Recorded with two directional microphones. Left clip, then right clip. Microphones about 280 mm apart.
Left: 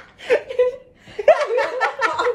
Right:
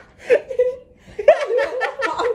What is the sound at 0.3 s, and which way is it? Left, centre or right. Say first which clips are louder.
Chuckle: right 1 dB; centre.